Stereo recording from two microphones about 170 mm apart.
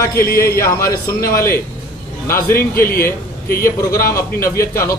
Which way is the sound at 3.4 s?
60° left (ahead or behind).